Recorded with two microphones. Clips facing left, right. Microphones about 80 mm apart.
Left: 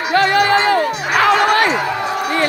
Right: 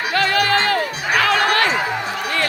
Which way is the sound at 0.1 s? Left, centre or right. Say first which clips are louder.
Left 5 dB; left.